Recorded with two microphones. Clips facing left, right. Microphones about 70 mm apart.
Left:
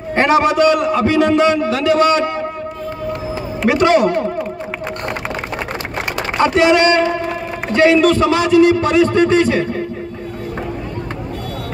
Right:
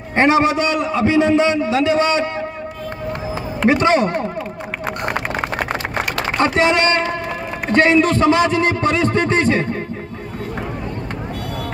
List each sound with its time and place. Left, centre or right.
0.1 s a man's voice: right
3.6 s a man's voice: right
5.1 s a sound: right
6.4 s a man's voice: right